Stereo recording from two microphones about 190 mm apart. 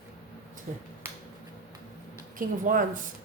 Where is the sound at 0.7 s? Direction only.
45° right (ahead or behind).